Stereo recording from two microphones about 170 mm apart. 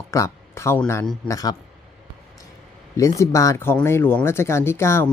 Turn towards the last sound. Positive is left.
turn(degrees=15)  # may be behind; listen again after turning